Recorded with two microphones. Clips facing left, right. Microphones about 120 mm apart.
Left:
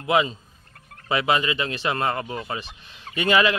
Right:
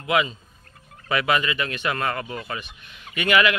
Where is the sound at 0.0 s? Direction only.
30° left (ahead or behind).